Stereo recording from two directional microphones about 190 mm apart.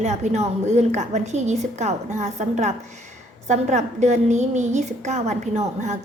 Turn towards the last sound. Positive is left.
turn(degrees=-40)  # may be behind; listen again after turning